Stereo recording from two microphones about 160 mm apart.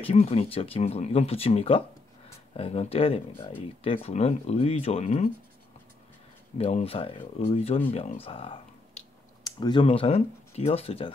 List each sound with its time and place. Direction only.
0.0 s speech: 40° left (ahead or behind)
6.6 s speech: 40° left (ahead or behind)